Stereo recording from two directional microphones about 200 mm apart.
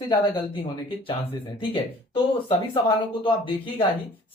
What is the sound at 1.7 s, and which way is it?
Speech, 25° left (ahead or behind).